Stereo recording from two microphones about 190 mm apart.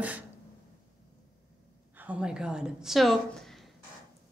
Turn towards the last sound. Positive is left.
turn(degrees=0)  # may be behind; listen again after turning